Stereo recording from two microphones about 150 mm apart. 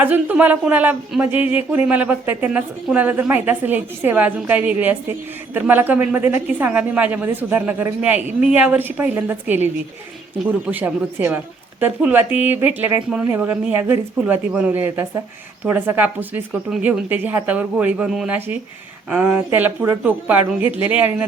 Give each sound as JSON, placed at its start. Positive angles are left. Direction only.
{"t": 0.0, "sound": "speech", "side_deg": -10}
{"t": 10.7, "sound": "speech", "side_deg": -10}